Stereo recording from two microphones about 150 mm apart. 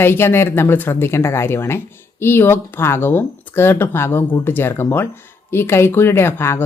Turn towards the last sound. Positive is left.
turn(degrees=15)  # may be behind; listen again after turning